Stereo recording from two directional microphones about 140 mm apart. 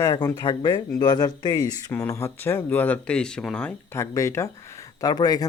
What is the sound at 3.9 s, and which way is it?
Speech, 20° left (ahead or behind).